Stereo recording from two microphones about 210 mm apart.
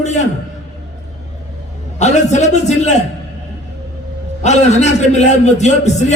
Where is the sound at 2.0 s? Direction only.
35° left (ahead or behind).